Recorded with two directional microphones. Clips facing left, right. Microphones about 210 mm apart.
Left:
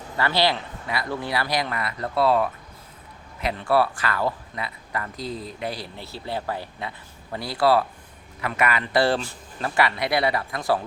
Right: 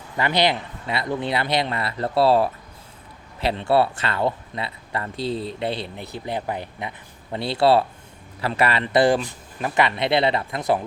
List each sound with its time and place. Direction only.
0.2 s a man's voice: 20° right (ahead or behind)